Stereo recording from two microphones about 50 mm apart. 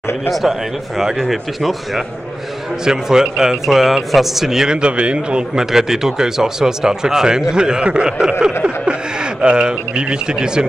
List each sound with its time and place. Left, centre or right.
0.3 s speech: centre
4.8 s a man's voice: right
5.7 s speech: centre